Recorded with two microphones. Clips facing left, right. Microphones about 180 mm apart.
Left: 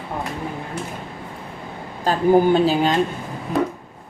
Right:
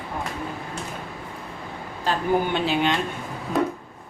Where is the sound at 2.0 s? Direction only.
40° left (ahead or behind).